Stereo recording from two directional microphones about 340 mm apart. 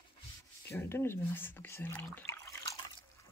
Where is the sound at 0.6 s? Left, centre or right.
Centre.